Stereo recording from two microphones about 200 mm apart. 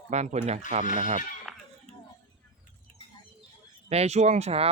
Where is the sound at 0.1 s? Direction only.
35° right (ahead or behind).